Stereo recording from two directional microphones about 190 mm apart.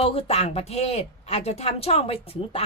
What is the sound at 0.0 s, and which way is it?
A woman's voice, 30° left (ahead or behind).